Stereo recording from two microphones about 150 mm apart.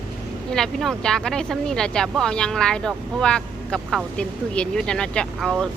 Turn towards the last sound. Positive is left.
turn(degrees=5)  # may be behind; listen again after turning